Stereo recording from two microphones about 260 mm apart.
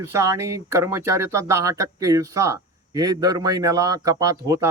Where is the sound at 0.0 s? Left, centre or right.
Centre.